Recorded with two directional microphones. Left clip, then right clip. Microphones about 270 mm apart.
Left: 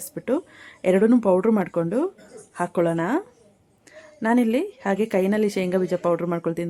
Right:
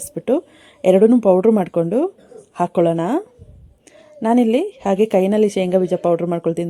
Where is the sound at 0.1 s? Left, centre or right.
Centre.